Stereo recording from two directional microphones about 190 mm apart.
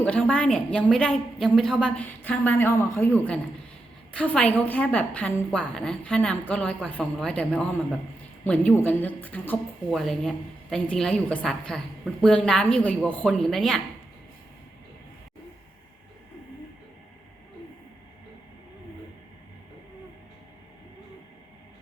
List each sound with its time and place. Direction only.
0.0 s a woman's voice: 5° left (ahead or behind)